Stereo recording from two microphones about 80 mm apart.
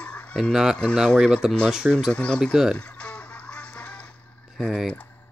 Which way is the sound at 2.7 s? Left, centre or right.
Centre.